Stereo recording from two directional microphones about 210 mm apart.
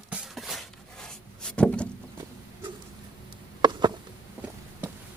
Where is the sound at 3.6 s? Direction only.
20° right (ahead or behind).